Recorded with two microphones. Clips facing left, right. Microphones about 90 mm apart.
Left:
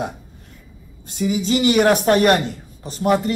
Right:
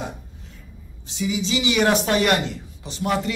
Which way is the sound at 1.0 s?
50° left (ahead or behind).